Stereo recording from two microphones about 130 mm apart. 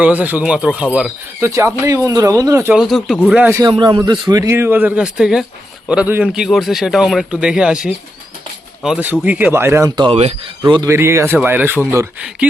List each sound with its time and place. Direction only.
0.0 s a man's voice: 10° right (ahead or behind)
1.4 s speech: 20° right (ahead or behind)
2.7 s a man's voice: centre (ahead or behind)
3.7 s a man's voice: 35° right (ahead or behind); by 9.9 s 20° right (ahead or behind)
10.0 s speech: 50° right (ahead or behind)
10.8 s a man's voice: 20° right (ahead or behind)